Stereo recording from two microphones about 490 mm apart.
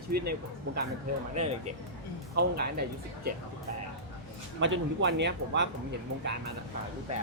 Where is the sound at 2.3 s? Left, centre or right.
Centre.